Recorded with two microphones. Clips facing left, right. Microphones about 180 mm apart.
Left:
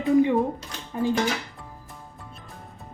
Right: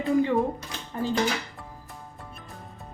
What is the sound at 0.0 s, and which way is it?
Music, 15° left (ahead or behind).